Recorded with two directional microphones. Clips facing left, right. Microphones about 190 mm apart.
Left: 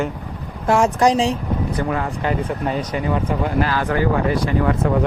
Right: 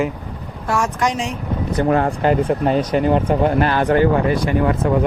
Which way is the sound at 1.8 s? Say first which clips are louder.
Right 6 dB; 45° right (ahead or behind).